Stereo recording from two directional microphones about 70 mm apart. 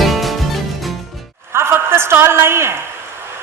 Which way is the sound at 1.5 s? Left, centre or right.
Right.